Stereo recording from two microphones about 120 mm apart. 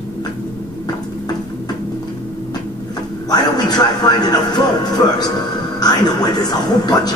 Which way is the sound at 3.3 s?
35° left (ahead or behind).